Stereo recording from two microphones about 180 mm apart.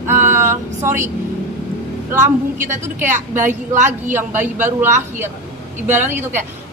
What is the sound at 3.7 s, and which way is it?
Speech, 40° right (ahead or behind).